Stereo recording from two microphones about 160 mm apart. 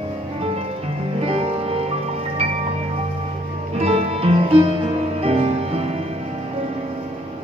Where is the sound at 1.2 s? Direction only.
35° right (ahead or behind).